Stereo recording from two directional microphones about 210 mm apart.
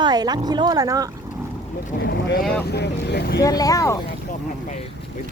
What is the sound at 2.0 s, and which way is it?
Speech, 50° left (ahead or behind).